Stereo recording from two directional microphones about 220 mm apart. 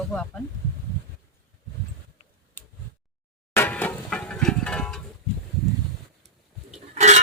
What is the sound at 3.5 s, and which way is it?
Music, 5° left (ahead or behind).